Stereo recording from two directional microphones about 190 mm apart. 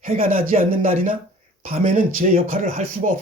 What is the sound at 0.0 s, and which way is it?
Speech, 45° right (ahead or behind).